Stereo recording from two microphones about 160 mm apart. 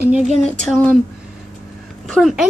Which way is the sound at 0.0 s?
10° right (ahead or behind).